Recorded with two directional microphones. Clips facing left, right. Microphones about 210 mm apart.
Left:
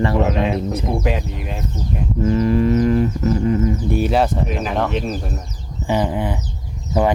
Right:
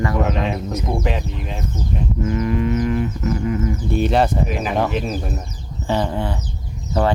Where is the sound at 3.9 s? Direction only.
5° left (ahead or behind).